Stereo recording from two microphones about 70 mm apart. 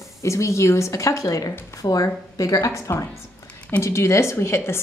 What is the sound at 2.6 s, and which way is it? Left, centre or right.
A woman's voice, left.